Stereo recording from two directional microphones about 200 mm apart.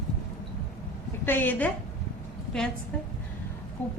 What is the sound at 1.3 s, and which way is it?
Speech, 10° left (ahead or behind).